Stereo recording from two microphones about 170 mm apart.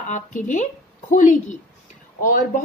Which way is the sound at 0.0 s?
45° left (ahead or behind).